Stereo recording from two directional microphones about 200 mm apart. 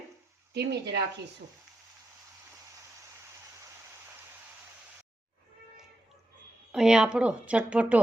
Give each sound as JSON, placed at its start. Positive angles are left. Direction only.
{"t": 0.5, "sound": "speech", "side_deg": -55}
{"t": 6.7, "sound": "a woman's voice", "side_deg": -5}